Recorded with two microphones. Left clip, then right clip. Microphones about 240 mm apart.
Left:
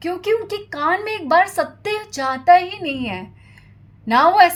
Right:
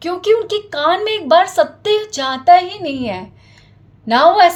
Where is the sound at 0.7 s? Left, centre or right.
Left.